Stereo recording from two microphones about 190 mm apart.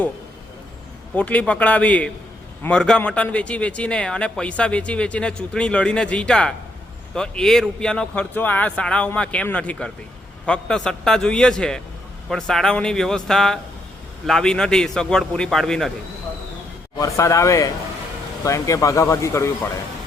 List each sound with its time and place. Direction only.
1.1 s a man's voice: 5° left (ahead or behind)
17.0 s speech: 15° left (ahead or behind)